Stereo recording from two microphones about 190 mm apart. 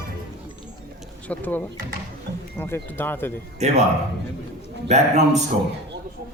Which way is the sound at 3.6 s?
35° right (ahead or behind).